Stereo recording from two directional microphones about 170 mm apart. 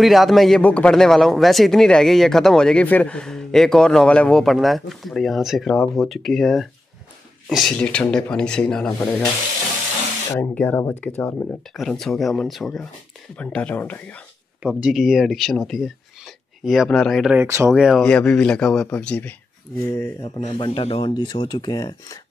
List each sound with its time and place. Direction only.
0.0 s a man's voice: centre (ahead or behind)
10.3 s a man's voice: 10° left (ahead or behind)
14.6 s speech: 5° right (ahead or behind)
17.4 s speech: 15° right (ahead or behind)
17.7 s a man's voice: 5° right (ahead or behind)
18.0 s a man's voice: 5° left (ahead or behind)
20.5 s speech: 30° left (ahead or behind)